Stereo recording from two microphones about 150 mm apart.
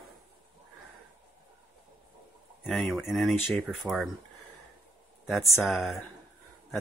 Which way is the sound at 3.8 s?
5° right (ahead or behind).